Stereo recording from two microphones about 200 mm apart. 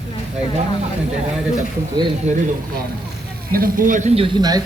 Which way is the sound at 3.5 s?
45° right (ahead or behind).